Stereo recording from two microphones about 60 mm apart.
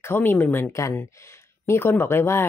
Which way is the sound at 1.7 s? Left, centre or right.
Left.